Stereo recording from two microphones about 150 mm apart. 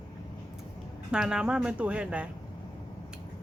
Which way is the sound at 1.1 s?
5° right (ahead or behind).